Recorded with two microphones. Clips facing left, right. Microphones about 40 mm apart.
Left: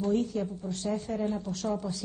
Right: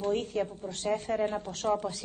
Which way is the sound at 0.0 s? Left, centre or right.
Right.